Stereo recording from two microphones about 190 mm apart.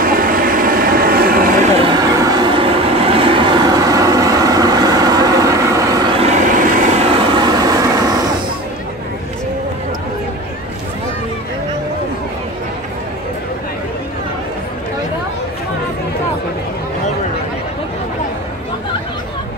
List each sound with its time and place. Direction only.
0.0 s vehicle: 50° right (ahead or behind)
1.8 s train: 20° right (ahead or behind)